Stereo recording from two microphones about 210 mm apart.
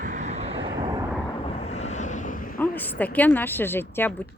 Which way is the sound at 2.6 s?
10° left (ahead or behind).